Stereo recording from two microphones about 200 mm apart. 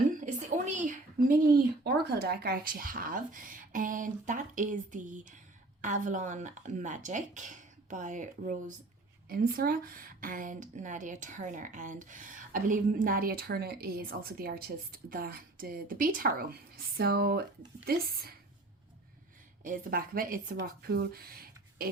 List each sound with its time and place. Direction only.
0.3 s a sound: 40° right (ahead or behind)
1.8 s a woman's voice: 55° right (ahead or behind)
19.6 s a woman's voice: 45° right (ahead or behind)